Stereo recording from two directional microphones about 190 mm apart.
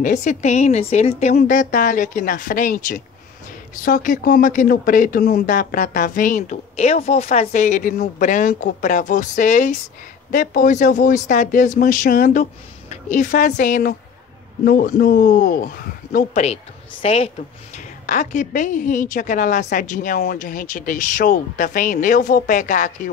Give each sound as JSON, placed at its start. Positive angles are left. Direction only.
{"t": 0.0, "sound": "a woman's voice", "side_deg": 40}